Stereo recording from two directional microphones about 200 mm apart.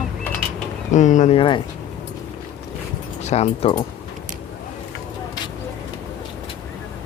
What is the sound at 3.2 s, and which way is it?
Speech, 35° left (ahead or behind).